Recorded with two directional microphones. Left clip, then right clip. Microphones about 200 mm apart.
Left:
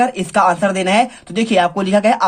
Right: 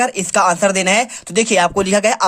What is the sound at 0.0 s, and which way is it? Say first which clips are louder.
Speech: left 1 dB; 30° right (ahead or behind).